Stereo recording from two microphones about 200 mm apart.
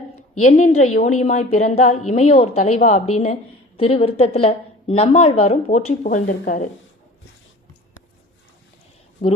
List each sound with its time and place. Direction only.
0.3 s speech: 35° left (ahead or behind)